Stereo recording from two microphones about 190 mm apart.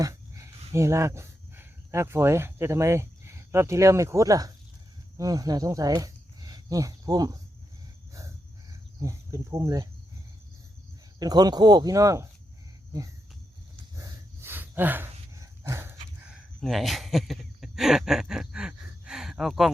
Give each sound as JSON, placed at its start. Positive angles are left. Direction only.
{"t": 0.0, "sound": "a sound", "side_deg": -15}
{"t": 0.7, "sound": "speech", "side_deg": -15}
{"t": 9.0, "sound": "speech", "side_deg": -15}
{"t": 11.2, "sound": "speech", "side_deg": -20}
{"t": 13.9, "sound": "dog", "side_deg": -15}
{"t": 16.3, "sound": "a sound", "side_deg": 0}